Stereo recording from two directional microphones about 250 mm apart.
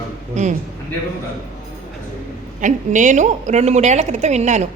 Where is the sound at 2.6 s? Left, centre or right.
Right.